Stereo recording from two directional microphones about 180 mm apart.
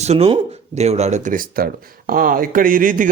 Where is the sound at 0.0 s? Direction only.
35° right (ahead or behind).